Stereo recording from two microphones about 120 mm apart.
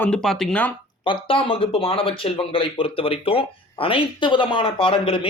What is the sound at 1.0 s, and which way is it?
Speech, 45° left (ahead or behind).